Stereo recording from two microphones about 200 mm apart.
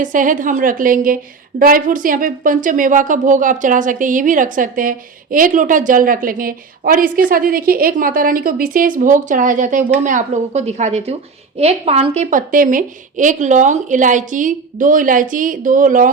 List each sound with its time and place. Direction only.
0.0 s a woman's voice: 40° right (ahead or behind)